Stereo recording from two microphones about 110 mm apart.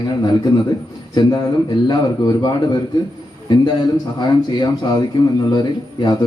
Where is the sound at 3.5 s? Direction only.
40° left (ahead or behind).